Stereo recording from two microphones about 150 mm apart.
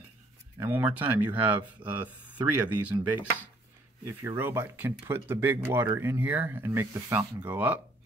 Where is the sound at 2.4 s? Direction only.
10° right (ahead or behind).